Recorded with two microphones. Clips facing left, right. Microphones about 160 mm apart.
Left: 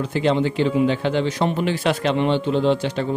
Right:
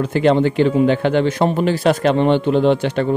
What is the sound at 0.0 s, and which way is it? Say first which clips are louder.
A man's voice: right 5 dB; 55° right (ahead or behind).